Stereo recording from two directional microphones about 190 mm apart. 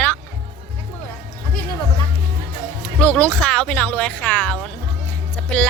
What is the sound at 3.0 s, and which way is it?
Speech, 5° left (ahead or behind).